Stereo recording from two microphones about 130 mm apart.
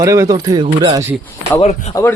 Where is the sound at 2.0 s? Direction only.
25° left (ahead or behind).